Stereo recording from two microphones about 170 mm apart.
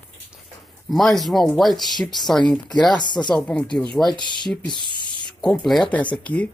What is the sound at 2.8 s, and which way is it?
Speech, 25° left (ahead or behind).